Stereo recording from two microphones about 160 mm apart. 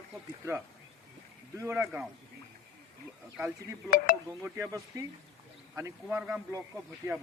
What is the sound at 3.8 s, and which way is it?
Speech, 60° left (ahead or behind).